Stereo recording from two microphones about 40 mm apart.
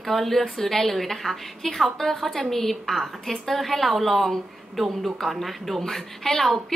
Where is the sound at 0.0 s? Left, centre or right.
Centre.